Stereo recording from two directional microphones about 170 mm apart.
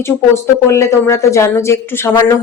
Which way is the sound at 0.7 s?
15° left (ahead or behind).